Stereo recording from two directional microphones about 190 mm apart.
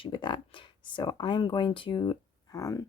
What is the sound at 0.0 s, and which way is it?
Speech, 25° left (ahead or behind).